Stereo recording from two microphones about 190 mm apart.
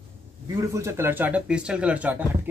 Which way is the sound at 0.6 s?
15° right (ahead or behind).